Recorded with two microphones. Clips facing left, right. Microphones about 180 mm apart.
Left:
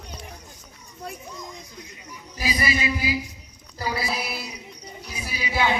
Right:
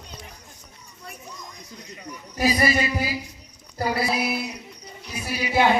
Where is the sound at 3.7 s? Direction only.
60° right (ahead or behind).